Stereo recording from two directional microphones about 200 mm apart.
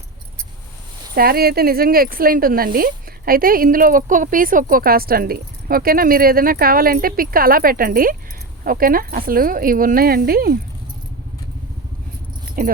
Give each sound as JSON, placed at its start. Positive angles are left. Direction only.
{"t": 1.1, "sound": "speech", "side_deg": -50}
{"t": 12.6, "sound": "speech", "side_deg": -45}